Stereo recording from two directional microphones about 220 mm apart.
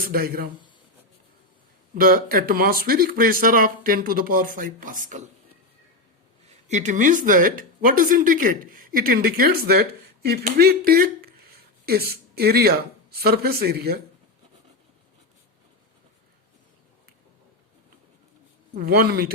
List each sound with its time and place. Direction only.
0.1 s speech: 40° right (ahead or behind)
2.0 s speech: 40° right (ahead or behind)
6.7 s speech: 35° right (ahead or behind)
18.7 s speech: 45° right (ahead or behind)